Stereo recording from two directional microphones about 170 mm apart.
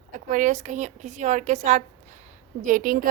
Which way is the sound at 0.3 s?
50° right (ahead or behind).